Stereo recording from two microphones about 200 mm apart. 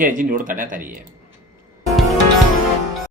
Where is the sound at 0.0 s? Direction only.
40° right (ahead or behind).